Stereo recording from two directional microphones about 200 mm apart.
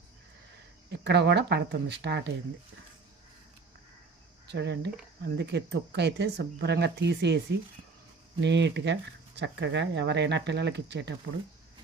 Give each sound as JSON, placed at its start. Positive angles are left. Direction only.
{"t": 0.9, "sound": "speech", "side_deg": -60}
{"t": 4.4, "sound": "speech", "side_deg": -60}
{"t": 8.4, "sound": "speech", "side_deg": -60}